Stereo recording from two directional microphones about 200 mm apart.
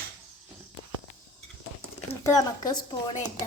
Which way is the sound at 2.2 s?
20° left (ahead or behind).